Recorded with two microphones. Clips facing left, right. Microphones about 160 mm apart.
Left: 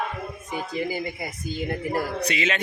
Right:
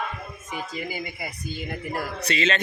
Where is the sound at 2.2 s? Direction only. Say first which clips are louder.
Right 1 dB; 15° left (ahead or behind).